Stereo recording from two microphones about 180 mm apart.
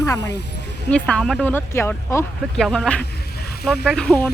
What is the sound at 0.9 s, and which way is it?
Speech, 5° left (ahead or behind).